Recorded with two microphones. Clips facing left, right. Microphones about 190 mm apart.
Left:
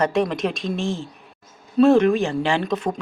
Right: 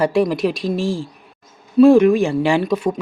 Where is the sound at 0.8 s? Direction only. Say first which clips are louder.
Right 4 dB; 25° left (ahead or behind).